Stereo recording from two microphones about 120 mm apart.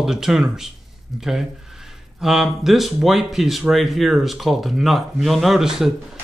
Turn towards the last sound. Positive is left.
turn(degrees=-5)  # may be behind; listen again after turning